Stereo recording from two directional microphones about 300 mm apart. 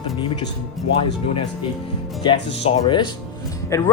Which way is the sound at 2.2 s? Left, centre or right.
Centre.